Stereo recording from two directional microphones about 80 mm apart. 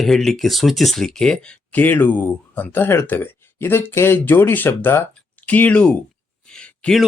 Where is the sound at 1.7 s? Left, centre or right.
Left.